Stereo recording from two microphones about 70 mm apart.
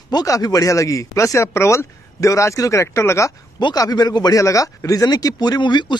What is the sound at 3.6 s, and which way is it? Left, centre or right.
Speech, left.